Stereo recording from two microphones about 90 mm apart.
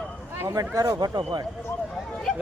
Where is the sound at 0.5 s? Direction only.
40° right (ahead or behind).